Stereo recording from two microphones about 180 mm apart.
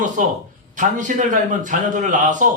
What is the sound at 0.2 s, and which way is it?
A man's voice, 45° right (ahead or behind).